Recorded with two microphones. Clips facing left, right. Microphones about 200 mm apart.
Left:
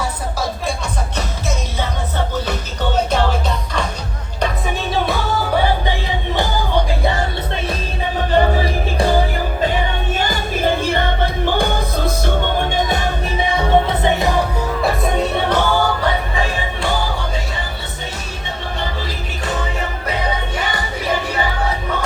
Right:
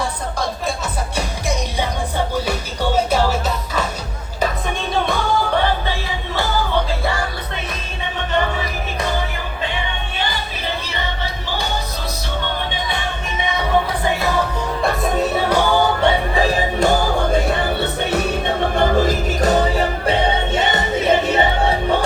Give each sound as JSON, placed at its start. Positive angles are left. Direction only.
{"t": 2.3, "sound": "music", "side_deg": -10}
{"t": 4.9, "sound": "music", "side_deg": 0}
{"t": 8.3, "sound": "music", "side_deg": 35}
{"t": 10.2, "sound": "music", "side_deg": 45}
{"t": 14.2, "sound": "music", "side_deg": 15}
{"t": 14.8, "sound": "music", "side_deg": 0}
{"t": 16.0, "sound": "music", "side_deg": -35}